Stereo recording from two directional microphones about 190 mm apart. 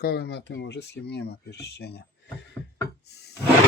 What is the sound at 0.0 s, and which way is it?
Speech, 55° left (ahead or behind).